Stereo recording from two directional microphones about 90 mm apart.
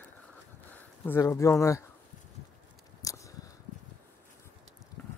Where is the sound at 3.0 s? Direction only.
40° left (ahead or behind).